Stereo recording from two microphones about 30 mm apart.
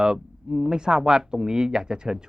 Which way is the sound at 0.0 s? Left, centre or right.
Right.